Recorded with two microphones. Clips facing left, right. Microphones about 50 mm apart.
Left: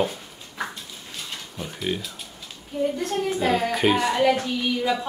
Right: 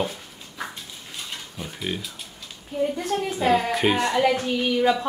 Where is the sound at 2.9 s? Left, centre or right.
Centre.